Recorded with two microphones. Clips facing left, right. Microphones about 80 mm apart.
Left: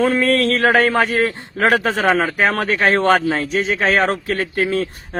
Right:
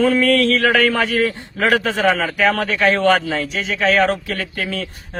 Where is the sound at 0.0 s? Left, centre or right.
Left.